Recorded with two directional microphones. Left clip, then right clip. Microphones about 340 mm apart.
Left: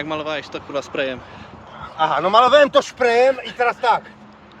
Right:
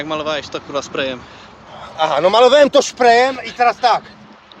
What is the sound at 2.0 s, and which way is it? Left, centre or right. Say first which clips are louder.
Speech: right 3 dB; right.